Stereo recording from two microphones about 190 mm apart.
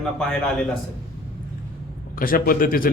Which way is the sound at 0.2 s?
5° left (ahead or behind).